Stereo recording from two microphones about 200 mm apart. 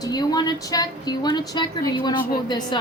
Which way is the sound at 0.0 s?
20° left (ahead or behind).